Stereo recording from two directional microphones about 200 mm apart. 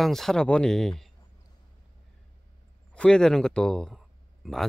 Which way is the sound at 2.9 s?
5° left (ahead or behind).